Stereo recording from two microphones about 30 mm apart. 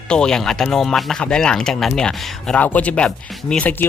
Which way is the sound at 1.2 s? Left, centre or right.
Left.